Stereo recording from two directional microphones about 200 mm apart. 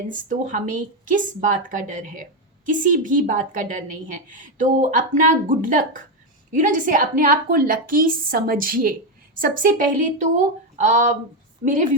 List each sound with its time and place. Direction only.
0.1 s a woman's voice: 40° right (ahead or behind)